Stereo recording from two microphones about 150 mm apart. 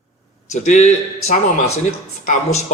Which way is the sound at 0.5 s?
50° left (ahead or behind).